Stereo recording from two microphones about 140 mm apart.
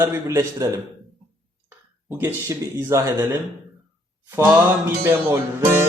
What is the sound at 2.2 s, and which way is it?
Speech, 15° right (ahead or behind).